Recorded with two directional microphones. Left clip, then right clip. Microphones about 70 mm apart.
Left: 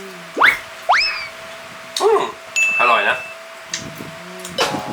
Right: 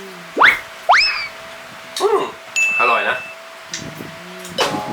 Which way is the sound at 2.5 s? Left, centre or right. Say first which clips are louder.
Left 1 dB; centre.